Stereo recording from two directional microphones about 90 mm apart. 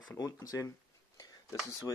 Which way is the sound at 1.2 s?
40° left (ahead or behind).